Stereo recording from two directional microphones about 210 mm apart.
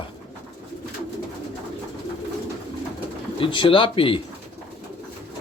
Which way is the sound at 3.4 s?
25° left (ahead or behind).